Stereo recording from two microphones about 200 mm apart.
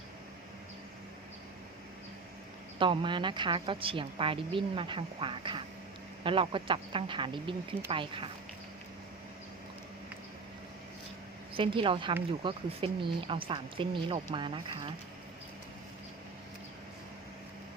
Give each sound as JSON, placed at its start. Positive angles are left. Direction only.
{"t": 2.7, "sound": "speech", "side_deg": -25}
{"t": 11.5, "sound": "speech", "side_deg": -25}